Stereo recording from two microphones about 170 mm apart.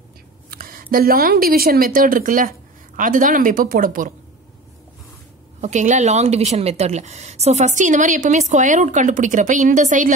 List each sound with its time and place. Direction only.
0.5 s a woman's voice: 55° right (ahead or behind)
5.6 s a woman's voice: 45° right (ahead or behind)